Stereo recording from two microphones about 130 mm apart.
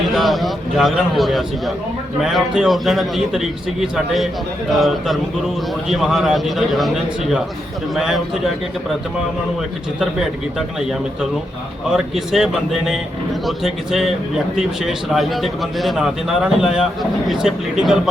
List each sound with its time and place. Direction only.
0.1 s a man's voice: centre (ahead or behind)
11.9 s a man's voice: centre (ahead or behind)